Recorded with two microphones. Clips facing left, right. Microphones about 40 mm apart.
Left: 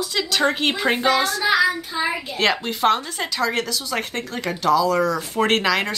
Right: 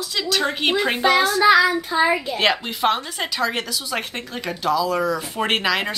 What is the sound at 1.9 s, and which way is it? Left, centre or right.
Speech, right.